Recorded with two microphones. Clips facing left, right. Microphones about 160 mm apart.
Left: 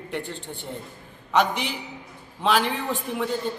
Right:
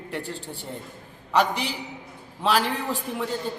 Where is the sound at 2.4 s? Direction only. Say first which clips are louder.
Left 1 dB; 5° right (ahead or behind).